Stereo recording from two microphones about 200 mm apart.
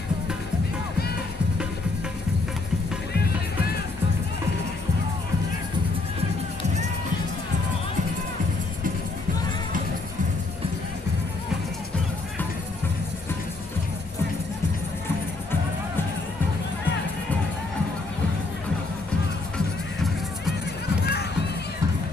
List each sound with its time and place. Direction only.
19.5 s music: centre (ahead or behind)
21.0 s music: 55° left (ahead or behind)